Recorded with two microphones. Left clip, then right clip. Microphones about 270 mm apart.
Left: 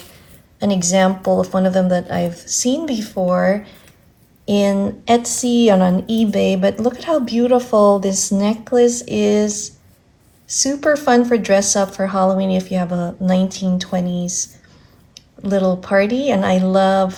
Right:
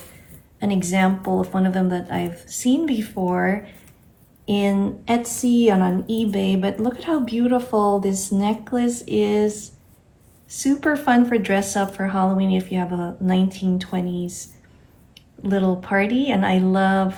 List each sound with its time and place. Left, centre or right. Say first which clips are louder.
0.6 s speech: left 6 dB; left